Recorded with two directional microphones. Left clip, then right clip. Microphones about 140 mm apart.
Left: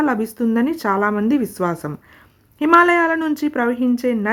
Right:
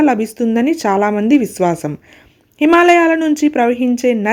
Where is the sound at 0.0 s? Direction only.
15° right (ahead or behind).